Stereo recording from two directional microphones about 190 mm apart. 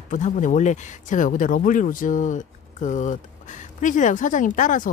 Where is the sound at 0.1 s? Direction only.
40° left (ahead or behind).